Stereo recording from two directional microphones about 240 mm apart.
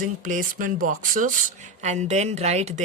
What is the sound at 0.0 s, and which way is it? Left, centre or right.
Speech, right.